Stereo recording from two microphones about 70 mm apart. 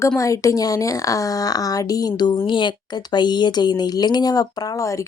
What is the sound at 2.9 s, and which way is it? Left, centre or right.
Speech, left.